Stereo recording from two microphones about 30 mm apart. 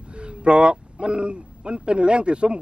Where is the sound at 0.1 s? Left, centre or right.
Right.